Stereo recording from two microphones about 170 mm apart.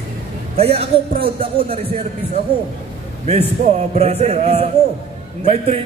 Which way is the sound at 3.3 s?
40° right (ahead or behind).